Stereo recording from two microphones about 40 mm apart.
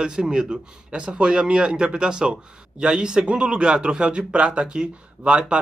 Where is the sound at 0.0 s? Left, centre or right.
Centre.